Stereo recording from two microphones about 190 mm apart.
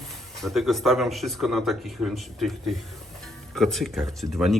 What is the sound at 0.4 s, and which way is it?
Speech, centre (ahead or behind).